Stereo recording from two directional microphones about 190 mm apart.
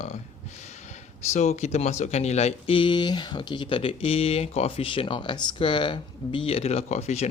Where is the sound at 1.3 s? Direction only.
35° left (ahead or behind).